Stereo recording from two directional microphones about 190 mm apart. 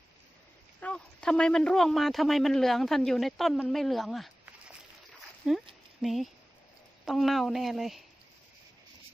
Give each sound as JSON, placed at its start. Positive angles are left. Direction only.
{"t": 0.8, "sound": "speech", "side_deg": 5}
{"t": 5.5, "sound": "speech", "side_deg": -5}